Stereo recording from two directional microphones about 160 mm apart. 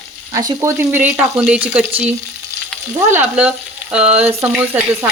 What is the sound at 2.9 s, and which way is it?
Speech, 10° right (ahead or behind).